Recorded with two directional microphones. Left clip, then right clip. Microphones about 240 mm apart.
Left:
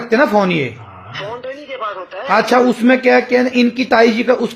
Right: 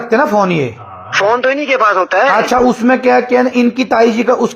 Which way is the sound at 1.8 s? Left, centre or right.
Right.